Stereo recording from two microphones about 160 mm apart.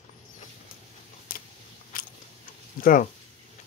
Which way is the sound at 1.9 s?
60° left (ahead or behind).